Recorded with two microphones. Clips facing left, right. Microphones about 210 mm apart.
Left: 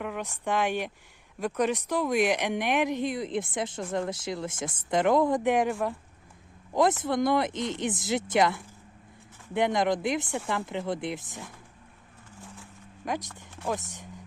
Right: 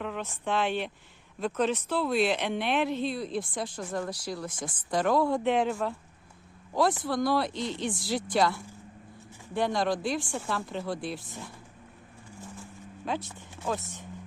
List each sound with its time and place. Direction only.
0.0 s speech: 10° left (ahead or behind)
6.7 s speech: 20° left (ahead or behind)
9.6 s speech: 20° left (ahead or behind)
13.0 s speech: 15° left (ahead or behind)